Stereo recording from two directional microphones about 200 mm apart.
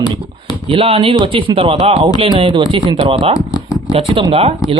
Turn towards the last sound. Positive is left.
turn(degrees=-30)  # may be behind; listen again after turning